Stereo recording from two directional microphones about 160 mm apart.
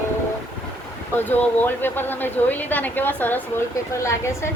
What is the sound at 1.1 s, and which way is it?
Speech, 10° left (ahead or behind).